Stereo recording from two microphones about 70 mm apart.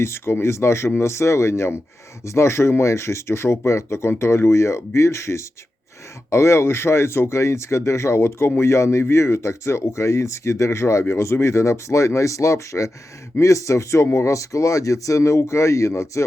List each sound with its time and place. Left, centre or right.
0.0 s speech: left